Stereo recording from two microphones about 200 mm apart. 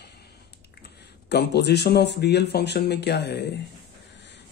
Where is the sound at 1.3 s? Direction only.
55° left (ahead or behind).